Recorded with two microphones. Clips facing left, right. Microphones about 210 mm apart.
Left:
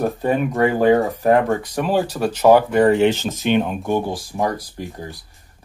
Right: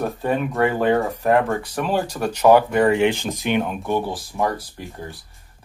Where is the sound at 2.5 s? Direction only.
40° left (ahead or behind).